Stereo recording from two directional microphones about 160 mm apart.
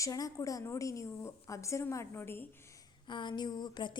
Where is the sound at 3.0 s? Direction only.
30° left (ahead or behind).